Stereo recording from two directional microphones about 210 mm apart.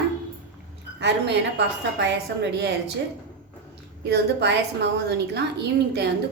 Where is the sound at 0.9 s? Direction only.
55° right (ahead or behind).